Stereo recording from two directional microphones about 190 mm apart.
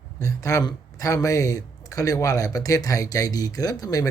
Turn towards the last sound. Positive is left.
turn(degrees=20)  # may be behind; listen again after turning